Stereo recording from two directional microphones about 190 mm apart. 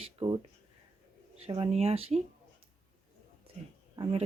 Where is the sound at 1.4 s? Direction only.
30° right (ahead or behind).